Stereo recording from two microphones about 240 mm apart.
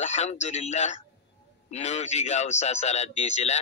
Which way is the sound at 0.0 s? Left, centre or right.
Left.